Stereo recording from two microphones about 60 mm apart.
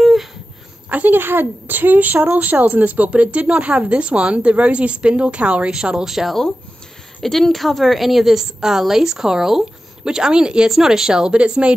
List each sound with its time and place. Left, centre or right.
0.0 s wail: centre
0.8 s a woman's voice: right